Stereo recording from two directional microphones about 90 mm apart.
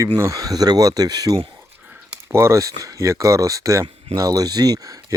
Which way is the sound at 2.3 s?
30° right (ahead or behind).